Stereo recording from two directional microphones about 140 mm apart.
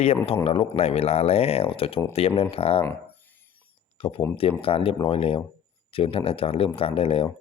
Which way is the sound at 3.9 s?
40° left (ahead or behind).